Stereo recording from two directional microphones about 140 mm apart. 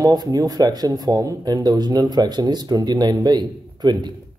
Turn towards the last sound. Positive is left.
turn(degrees=-30)  # may be behind; listen again after turning